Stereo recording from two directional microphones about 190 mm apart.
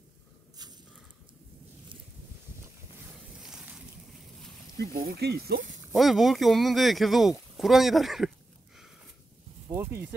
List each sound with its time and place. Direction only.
3.3 s boat: 5° right (ahead or behind)
4.7 s speech: 50° right (ahead or behind)
5.9 s speech: centre (ahead or behind)
9.7 s a sound: 15° right (ahead or behind)